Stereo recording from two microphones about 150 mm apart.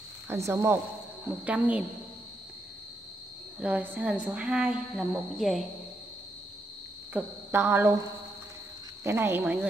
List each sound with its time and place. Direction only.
0.3 s a woman's voice: 20° right (ahead or behind)
3.5 s a woman's voice: 10° right (ahead or behind)
7.2 s a woman's voice: 15° right (ahead or behind)
9.0 s a woman's voice: 15° right (ahead or behind)